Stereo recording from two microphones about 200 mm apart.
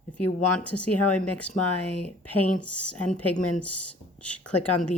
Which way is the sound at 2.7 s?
5° left (ahead or behind).